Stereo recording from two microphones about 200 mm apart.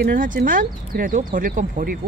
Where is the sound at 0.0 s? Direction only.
45° right (ahead or behind).